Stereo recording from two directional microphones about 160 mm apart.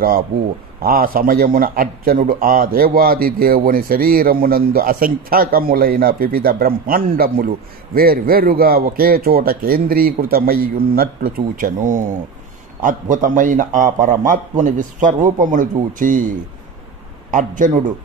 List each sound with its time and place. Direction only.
0.8 s a man's voice: 65° right (ahead or behind)